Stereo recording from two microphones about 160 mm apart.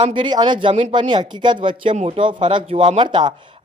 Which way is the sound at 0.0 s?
30° right (ahead or behind).